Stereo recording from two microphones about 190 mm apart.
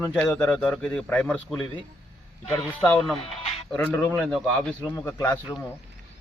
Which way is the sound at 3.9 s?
5° left (ahead or behind).